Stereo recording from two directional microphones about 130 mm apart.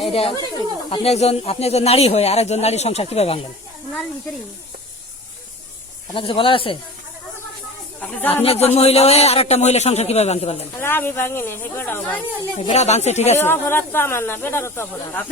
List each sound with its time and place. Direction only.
0.0 s speech: 45° left (ahead or behind)
6.1 s speech: 40° left (ahead or behind)
8.4 s a man's voice: 55° left (ahead or behind)
10.8 s speech: 15° left (ahead or behind)
12.5 s a man's voice: 60° left (ahead or behind)
13.3 s speech: 15° left (ahead or behind)